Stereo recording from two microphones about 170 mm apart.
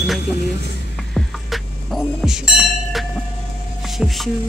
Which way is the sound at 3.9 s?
Centre (ahead or behind).